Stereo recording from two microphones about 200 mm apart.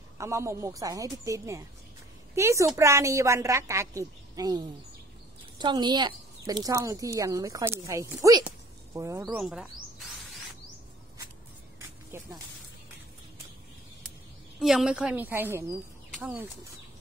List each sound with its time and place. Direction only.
0.2 s speech: 15° right (ahead or behind)
9.2 s snake: 5° right (ahead or behind)
12.1 s speech: 10° right (ahead or behind)
14.6 s speech: centre (ahead or behind)